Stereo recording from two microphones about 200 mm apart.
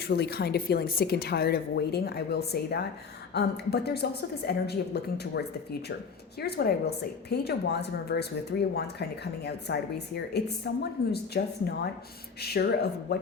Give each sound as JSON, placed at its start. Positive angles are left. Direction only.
{"t": 0.1, "sound": "a woman's voice", "side_deg": 55}